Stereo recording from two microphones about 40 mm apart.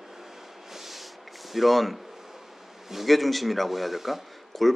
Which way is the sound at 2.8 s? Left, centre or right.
Centre.